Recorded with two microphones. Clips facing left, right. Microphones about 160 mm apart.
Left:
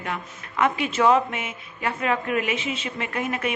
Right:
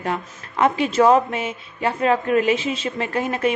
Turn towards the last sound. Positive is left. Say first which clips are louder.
# right 5 dB
turn(degrees=-30)  # may be behind; listen again after turning